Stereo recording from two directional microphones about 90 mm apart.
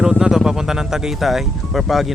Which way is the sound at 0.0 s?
5° right (ahead or behind).